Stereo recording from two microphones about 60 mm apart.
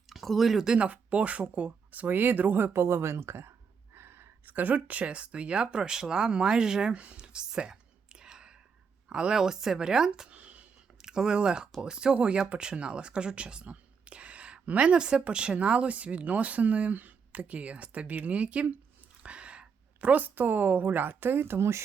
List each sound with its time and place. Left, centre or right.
0.1 s speech: centre
0.8 s speech: right
2.7 s speech: right
11.0 s speech: centre; by 21.8 s right